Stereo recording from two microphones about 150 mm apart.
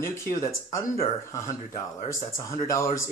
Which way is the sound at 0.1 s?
20° left (ahead or behind).